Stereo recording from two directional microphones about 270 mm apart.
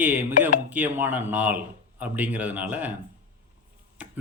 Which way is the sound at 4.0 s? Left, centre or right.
Centre.